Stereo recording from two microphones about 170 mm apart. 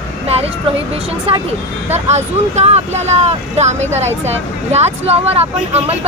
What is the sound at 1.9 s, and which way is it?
Speech, 40° right (ahead or behind).